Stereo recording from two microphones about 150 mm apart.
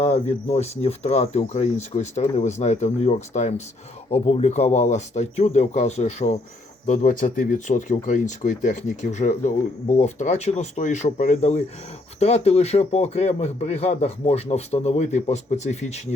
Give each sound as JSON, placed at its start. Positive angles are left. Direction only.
{"t": 0.0, "sound": "a man's voice", "side_deg": 45}